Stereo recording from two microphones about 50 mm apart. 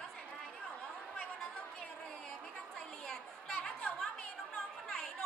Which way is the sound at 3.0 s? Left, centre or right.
Centre.